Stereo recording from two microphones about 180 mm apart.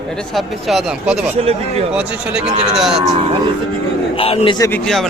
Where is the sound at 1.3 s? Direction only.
35° right (ahead or behind).